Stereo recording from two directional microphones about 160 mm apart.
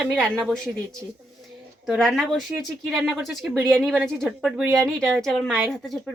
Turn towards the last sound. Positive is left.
turn(degrees=0)  # may be behind; listen again after turning